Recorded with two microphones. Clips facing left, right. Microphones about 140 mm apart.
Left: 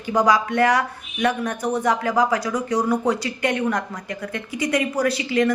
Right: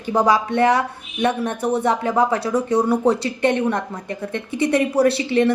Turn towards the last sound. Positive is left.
turn(degrees=-30)  # may be behind; listen again after turning